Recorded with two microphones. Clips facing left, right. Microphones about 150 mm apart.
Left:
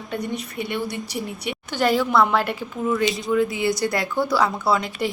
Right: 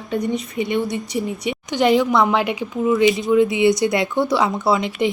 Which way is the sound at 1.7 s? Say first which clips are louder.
Right 3 dB; 20° right (ahead or behind).